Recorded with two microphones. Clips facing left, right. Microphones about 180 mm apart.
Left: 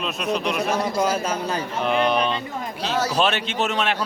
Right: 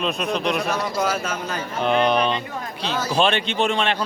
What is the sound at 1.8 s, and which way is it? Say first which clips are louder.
Speech: right 2 dB; 5° left (ahead or behind).